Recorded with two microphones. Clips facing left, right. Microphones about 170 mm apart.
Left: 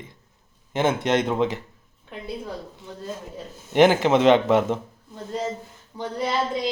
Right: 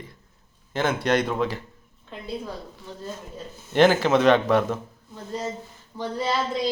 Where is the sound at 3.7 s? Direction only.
20° left (ahead or behind).